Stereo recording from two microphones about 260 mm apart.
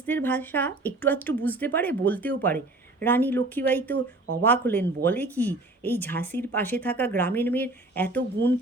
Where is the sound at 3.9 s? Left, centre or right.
Right.